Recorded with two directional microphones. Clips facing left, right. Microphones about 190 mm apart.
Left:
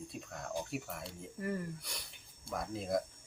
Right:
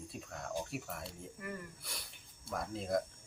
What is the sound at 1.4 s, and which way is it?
Cricket, 30° left (ahead or behind).